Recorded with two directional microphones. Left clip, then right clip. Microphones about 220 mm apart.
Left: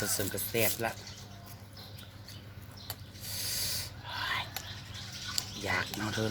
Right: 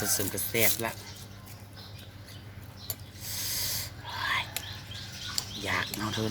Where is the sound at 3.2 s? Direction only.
15° left (ahead or behind).